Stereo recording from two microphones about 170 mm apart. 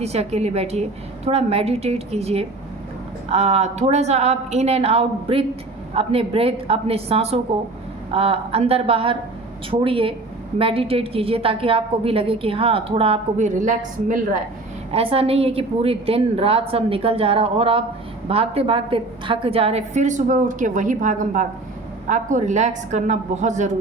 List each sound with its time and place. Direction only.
0.0 s a woman's voice: 40° right (ahead or behind)
14.9 s a woman's voice: 35° right (ahead or behind)